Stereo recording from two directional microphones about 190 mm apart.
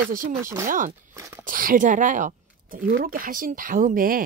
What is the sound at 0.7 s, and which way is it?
Speech, 45° right (ahead or behind).